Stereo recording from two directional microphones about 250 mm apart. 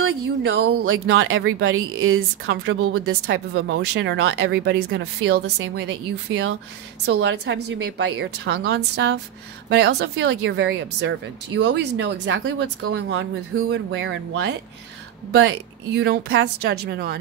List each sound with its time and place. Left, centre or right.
0.0 s speech: right
3.5 s speech: right
6.3 s speech: right
7.1 s speech: right